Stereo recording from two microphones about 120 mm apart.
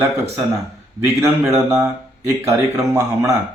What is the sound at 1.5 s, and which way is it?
Speech, 20° right (ahead or behind).